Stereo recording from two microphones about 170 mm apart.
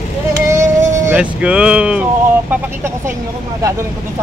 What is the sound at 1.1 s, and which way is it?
Speech, 5° right (ahead or behind).